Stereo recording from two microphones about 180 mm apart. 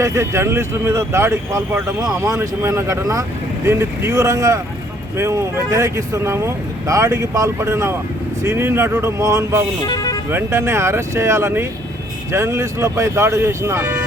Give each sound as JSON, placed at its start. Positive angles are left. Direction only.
{"t": 0.0, "sound": "speech", "side_deg": -15}
{"t": 9.8, "sound": "speech", "side_deg": 20}
{"t": 10.2, "sound": "speech", "side_deg": -15}